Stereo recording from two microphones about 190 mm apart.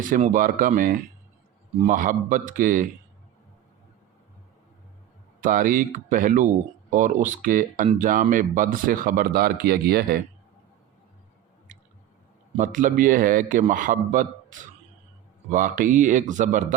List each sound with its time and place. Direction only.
0.1 s speech: 45° right (ahead or behind)
5.4 s speech: 45° right (ahead or behind)
11.7 s squish: 40° right (ahead or behind)
12.5 s speech: 45° right (ahead or behind)
15.4 s speech: 40° right (ahead or behind)